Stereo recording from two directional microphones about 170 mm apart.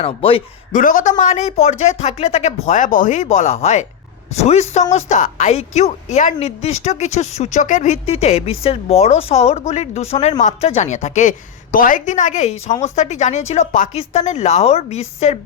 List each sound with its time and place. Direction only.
0.0 s a woman's voice: 35° left (ahead or behind)
0.8 s a woman's voice: 50° left (ahead or behind)